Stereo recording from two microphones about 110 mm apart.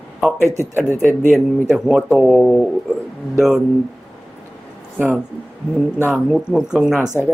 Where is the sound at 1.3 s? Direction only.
5° right (ahead or behind).